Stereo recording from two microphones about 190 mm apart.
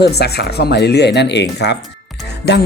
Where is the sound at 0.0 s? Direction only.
60° left (ahead or behind).